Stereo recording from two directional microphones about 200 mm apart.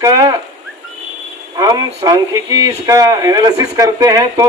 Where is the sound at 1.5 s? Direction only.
20° right (ahead or behind).